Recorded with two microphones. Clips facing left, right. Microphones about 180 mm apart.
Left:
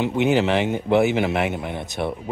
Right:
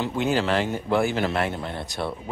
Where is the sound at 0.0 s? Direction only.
20° left (ahead or behind).